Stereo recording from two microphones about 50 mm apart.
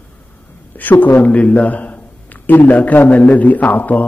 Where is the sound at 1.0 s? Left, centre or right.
Left.